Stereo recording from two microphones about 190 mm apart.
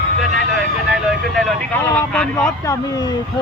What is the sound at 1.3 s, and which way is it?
Speech, 5° left (ahead or behind).